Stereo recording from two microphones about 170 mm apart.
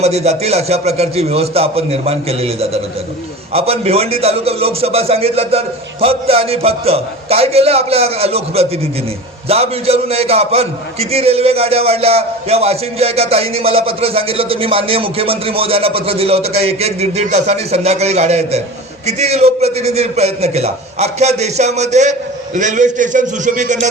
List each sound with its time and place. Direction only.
0.0 s a man's voice: 40° right (ahead or behind)